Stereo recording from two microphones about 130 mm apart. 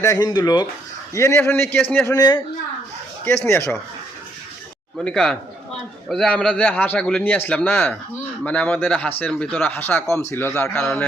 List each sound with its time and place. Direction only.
0.0 s a man's voice: 30° left (ahead or behind)
2.1 s speech: 30° left (ahead or behind)
3.2 s a man's voice: 20° left (ahead or behind)
5.0 s a man's voice: 5° left (ahead or behind)
10.5 s a man's voice: 10° left (ahead or behind)